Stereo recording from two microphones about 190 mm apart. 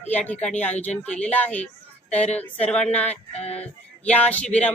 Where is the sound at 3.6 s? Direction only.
5° left (ahead or behind).